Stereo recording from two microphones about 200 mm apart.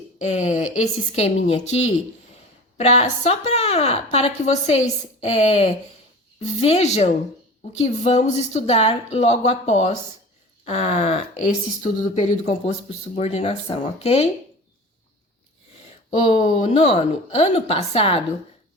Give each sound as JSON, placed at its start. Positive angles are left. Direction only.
{"t": 0.2, "sound": "speech", "side_deg": 35}
{"t": 16.3, "sound": "speech", "side_deg": 30}